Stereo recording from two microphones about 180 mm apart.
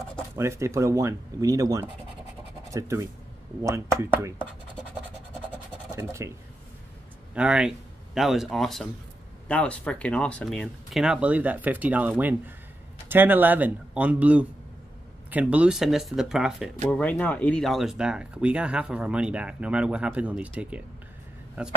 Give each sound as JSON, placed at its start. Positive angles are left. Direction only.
{"t": 0.4, "sound": "speech", "side_deg": -15}
{"t": 5.9, "sound": "speech", "side_deg": -15}
{"t": 7.3, "sound": "speech", "side_deg": -5}
{"t": 16.9, "sound": "speech", "side_deg": 10}